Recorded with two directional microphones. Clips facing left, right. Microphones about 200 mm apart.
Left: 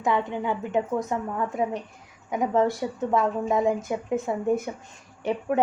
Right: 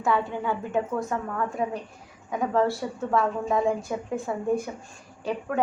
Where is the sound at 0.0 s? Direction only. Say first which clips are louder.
Even; 20° left (ahead or behind).